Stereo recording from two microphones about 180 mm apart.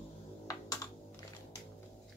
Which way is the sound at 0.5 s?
20° left (ahead or behind).